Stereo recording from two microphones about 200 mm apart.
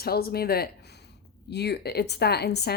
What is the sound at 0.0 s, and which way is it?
A woman's voice, 50° left (ahead or behind).